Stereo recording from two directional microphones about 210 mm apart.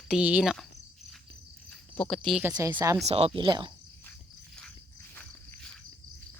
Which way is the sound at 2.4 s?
10° right (ahead or behind).